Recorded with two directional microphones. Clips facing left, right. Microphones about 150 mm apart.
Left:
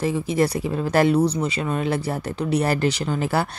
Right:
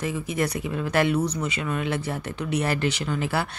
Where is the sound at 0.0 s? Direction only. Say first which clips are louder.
Left 6 dB; 30° left (ahead or behind).